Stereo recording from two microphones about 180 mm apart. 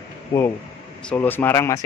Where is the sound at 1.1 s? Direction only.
10° left (ahead or behind).